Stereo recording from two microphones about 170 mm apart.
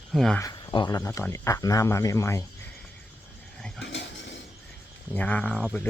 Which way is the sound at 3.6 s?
5° left (ahead or behind).